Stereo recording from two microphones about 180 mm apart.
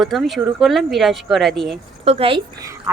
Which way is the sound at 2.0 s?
35° right (ahead or behind).